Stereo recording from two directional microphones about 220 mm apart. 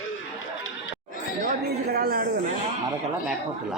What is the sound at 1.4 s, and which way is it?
Speech, 45° right (ahead or behind).